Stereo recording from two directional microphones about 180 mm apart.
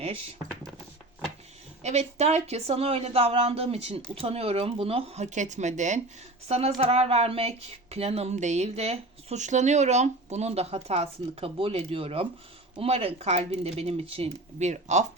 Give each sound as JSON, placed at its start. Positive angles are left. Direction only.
{"t": 1.8, "sound": "speech", "side_deg": -40}